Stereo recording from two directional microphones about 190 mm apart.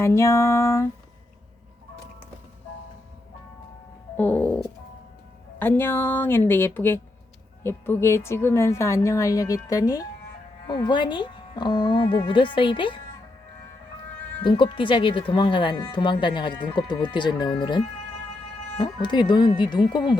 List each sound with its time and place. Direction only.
0.0 s a woman's voice: 15° left (ahead or behind)
4.2 s a woman's voice: 10° left (ahead or behind); by 13.0 s 25° left (ahead or behind)
14.4 s speech: 25° left (ahead or behind)